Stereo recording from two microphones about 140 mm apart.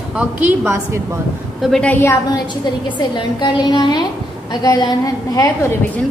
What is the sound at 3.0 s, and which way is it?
A woman's voice, 30° left (ahead or behind).